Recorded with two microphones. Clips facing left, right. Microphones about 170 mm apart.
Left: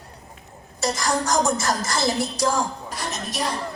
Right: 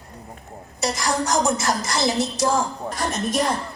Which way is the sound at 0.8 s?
20° right (ahead or behind).